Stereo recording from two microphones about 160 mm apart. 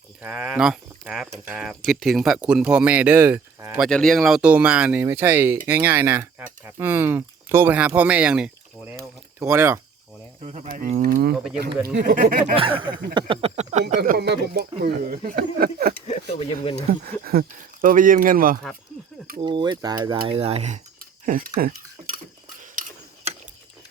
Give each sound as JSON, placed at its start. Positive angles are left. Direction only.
{"t": 0.2, "sound": "speech", "side_deg": -10}
{"t": 3.8, "sound": "speech", "side_deg": 5}
{"t": 10.4, "sound": "speech", "side_deg": -45}
{"t": 10.7, "sound": "speech", "side_deg": -55}
{"t": 11.9, "sound": "speech", "side_deg": -75}
{"t": 12.5, "sound": "speech", "side_deg": -35}
{"t": 13.9, "sound": "speech", "side_deg": -65}
{"t": 16.0, "sound": "speech", "side_deg": 40}
{"t": 17.2, "sound": "speech", "side_deg": -65}
{"t": 19.4, "sound": "speech", "side_deg": -30}
{"t": 21.0, "sound": "cutlery", "side_deg": -60}
{"t": 22.7, "sound": "mechanisms", "side_deg": -55}